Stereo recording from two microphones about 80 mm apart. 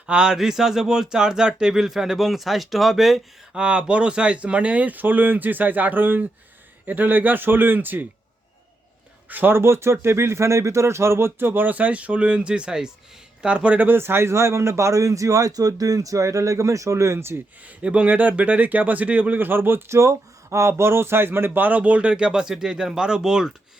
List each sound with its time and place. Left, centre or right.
0.1 s speech: centre
9.3 s a man's voice: right
17.7 s speech: centre